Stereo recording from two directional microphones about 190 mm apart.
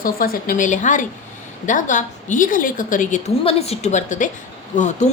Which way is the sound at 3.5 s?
30° left (ahead or behind).